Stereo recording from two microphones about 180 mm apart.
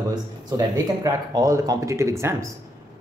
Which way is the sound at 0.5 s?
20° right (ahead or behind).